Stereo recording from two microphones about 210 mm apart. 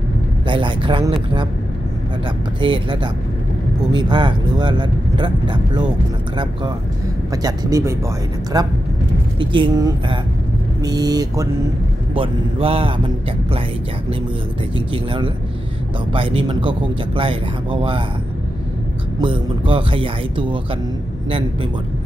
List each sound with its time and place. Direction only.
0.5 s speech: 25° right (ahead or behind)
2.6 s speech: 25° right (ahead or behind)
7.4 s speech: 15° right (ahead or behind)
15.0 s speech: 25° right (ahead or behind)
19.1 s speech: 25° right (ahead or behind)